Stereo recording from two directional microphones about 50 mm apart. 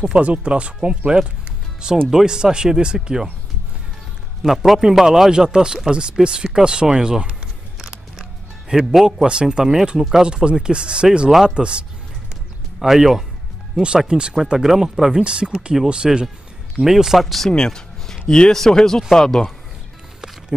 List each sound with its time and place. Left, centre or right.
0.0 s a man's voice: right
4.4 s a man's voice: centre
8.6 s a man's voice: centre
9.9 s a man's voice: centre
10.2 s speech: centre
11.2 s a man's voice: centre
11.5 s speech: right
12.7 s speech: centre
13.8 s a man's voice: centre
17.5 s a sound: centre
18.3 s speech: centre